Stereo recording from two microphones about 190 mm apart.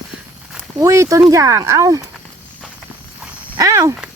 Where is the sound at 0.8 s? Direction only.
15° right (ahead or behind).